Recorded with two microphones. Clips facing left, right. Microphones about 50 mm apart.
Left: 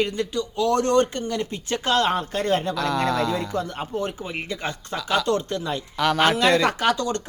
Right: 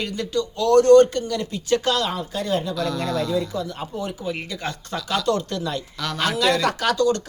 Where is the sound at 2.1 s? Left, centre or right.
Left.